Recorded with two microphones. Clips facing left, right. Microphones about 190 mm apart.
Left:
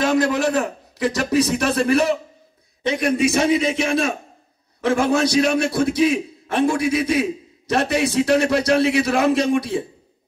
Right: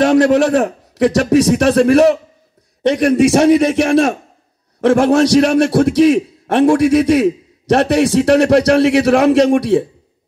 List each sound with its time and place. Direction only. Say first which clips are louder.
0.0 s a man's voice: right 8 dB; 70° right (ahead or behind)